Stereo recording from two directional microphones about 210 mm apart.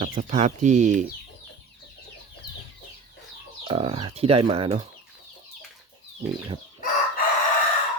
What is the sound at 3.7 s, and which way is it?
Speech, 25° right (ahead or behind).